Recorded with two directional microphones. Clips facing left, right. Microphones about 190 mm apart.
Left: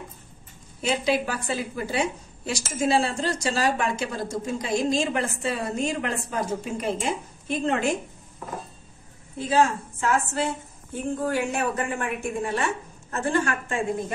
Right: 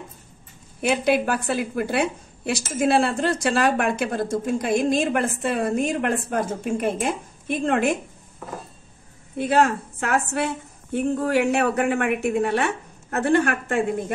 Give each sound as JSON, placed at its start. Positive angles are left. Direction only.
{"t": 0.7, "sound": "a woman's voice", "side_deg": -55}
{"t": 9.4, "sound": "a woman's voice", "side_deg": -60}